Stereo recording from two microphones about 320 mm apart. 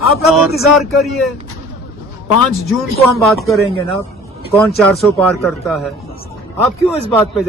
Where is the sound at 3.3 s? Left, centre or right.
Centre.